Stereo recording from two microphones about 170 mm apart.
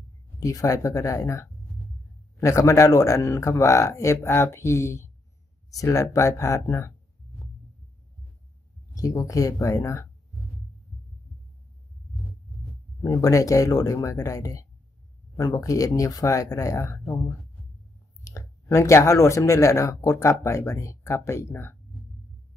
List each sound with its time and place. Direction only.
0.4 s speech: 20° left (ahead or behind)
8.9 s speech: 20° left (ahead or behind)
13.0 s speech: 20° left (ahead or behind)
18.2 s speech: 20° left (ahead or behind)